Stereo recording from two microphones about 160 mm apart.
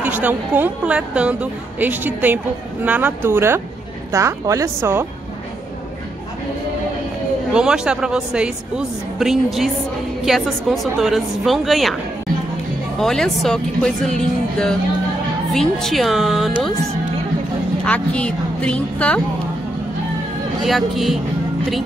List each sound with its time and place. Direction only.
0.0 s a woman's voice: 10° right (ahead or behind)
7.5 s speech: 5° right (ahead or behind)
13.0 s speech: centre (ahead or behind)
17.8 s a woman's voice: 10° left (ahead or behind)
20.6 s speech: centre (ahead or behind)